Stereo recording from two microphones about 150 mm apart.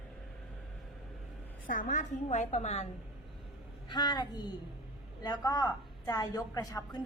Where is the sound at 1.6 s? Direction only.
60° left (ahead or behind); by 2.8 s 45° left (ahead or behind).